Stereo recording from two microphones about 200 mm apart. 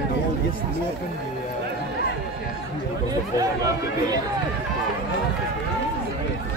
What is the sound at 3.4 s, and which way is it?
Speech, 20° right (ahead or behind).